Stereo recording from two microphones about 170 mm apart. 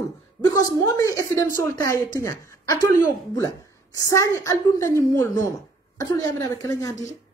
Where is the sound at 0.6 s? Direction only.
20° left (ahead or behind).